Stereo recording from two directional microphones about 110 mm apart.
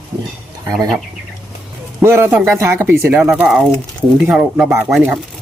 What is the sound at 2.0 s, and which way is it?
Speech, 20° right (ahead or behind).